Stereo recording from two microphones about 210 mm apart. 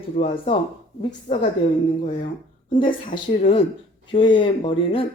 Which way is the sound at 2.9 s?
40° left (ahead or behind).